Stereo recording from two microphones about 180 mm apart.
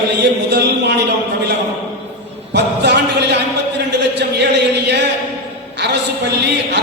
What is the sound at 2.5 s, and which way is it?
A man's voice, 70° right (ahead or behind).